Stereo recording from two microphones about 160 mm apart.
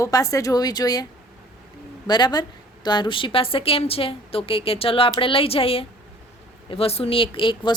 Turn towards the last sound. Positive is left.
turn(degrees=30)  # may be behind; listen again after turning